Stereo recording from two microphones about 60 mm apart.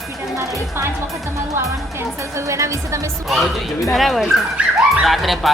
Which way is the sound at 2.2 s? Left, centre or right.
Right.